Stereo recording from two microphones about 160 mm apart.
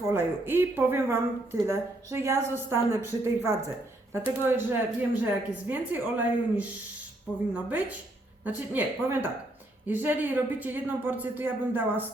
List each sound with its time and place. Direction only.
0.1 s speech: 15° right (ahead or behind)